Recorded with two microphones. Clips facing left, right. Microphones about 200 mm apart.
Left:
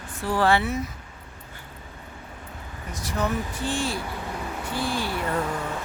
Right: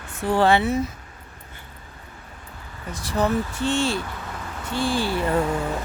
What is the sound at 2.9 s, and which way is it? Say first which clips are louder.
Speech: right 5 dB; 30° right (ahead or behind).